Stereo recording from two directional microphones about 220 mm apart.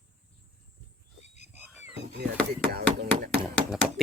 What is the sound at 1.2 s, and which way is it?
Wild animals, 30° left (ahead or behind).